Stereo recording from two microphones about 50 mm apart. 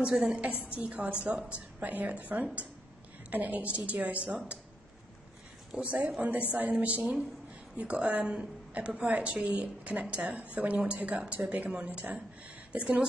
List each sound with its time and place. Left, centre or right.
0.1 s a woman's voice: centre
0.7 s a woman's voice: right
5.8 s a woman's voice: right